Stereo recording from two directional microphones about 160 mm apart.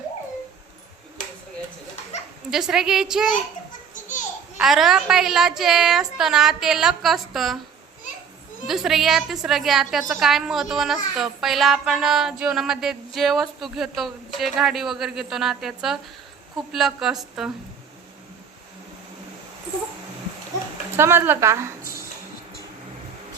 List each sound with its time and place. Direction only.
2.5 s a woman's voice: 5° right (ahead or behind)
4.5 s a woman's voice: centre (ahead or behind)
8.6 s a woman's voice: centre (ahead or behind)
20.9 s a woman's voice: 15° right (ahead or behind)